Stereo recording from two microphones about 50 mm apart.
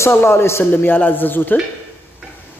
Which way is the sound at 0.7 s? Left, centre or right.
Left.